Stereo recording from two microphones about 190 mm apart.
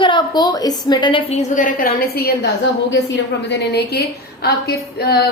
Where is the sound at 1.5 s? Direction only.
45° left (ahead or behind).